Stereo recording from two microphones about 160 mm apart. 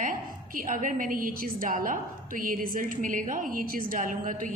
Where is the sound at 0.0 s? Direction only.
55° right (ahead or behind).